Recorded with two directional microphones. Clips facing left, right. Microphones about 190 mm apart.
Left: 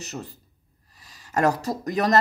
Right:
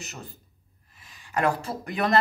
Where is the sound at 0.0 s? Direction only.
35° left (ahead or behind).